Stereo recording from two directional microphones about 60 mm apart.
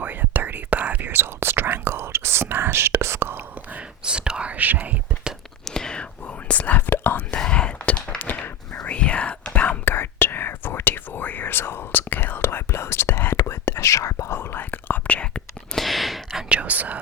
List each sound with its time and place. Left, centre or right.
0.0 s whispering: right
4.0 s whispering: centre
5.6 s whispering: centre
6.5 s whispering: left
7.3 s whispering: centre
8.2 s a sound: left
8.8 s whispering: centre
9.8 s whispering: left
14.3 s whispering: left; by 15.8 s centre
15.8 s a sound: centre
16.3 s whispering: centre